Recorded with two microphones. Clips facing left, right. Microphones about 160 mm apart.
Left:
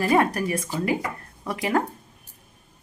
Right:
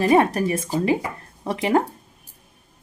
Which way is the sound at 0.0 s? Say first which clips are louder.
Right 4 dB; 25° right (ahead or behind).